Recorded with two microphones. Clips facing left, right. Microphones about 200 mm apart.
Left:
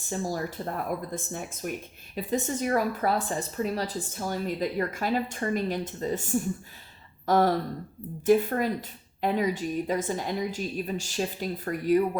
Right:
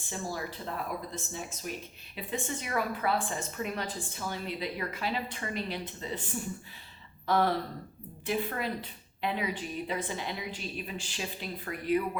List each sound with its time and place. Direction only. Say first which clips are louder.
0.1 s a woman's voice: left 6 dB; 40° left (ahead or behind)
1.1 s speech: left 5 dB; 55° left (ahead or behind)
2.1 s a woman's voice: left 7 dB; 40° left (ahead or behind)